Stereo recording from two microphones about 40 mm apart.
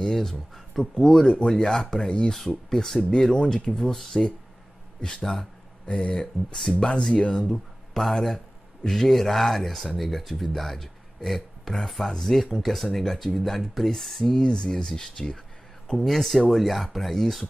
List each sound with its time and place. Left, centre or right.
0.0 s speech: centre
0.9 s speech: centre
6.1 s speech: centre
7.4 s speech: centre
14.3 s speech: centre